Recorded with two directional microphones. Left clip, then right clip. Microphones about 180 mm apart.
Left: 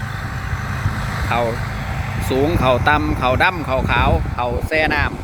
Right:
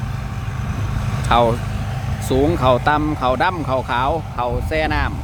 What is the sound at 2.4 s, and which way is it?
Speech, 10° right (ahead or behind).